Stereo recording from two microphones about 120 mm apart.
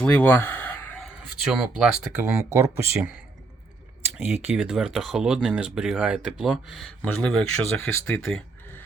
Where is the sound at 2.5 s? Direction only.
20° right (ahead or behind).